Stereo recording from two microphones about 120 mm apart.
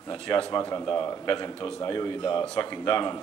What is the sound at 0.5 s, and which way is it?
A man's voice, 30° left (ahead or behind).